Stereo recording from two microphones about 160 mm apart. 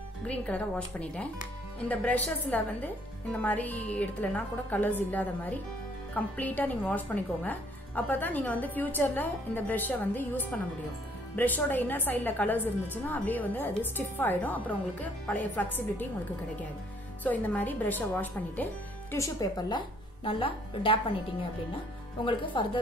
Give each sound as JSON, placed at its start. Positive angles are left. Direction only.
{"t": 0.3, "sound": "a woman's voice", "side_deg": 10}
{"t": 17.2, "sound": "a woman's voice", "side_deg": 10}
{"t": 19.1, "sound": "speech", "side_deg": 20}
{"t": 20.2, "sound": "speech", "side_deg": 35}
{"t": 22.2, "sound": "speech", "side_deg": 30}